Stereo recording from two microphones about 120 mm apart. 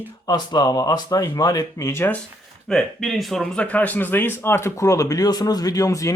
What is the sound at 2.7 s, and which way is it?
Speech, 5° left (ahead or behind).